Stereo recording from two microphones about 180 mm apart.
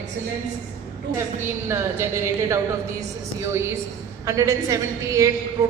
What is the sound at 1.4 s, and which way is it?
A woman's voice, 15° right (ahead or behind).